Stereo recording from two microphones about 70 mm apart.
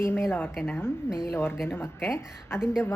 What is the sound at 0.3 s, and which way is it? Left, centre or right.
A woman's voice, left.